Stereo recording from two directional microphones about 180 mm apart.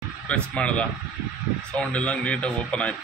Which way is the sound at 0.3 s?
5° left (ahead or behind).